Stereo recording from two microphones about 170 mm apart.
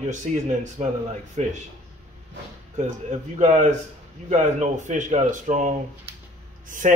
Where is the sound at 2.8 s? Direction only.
45° right (ahead or behind).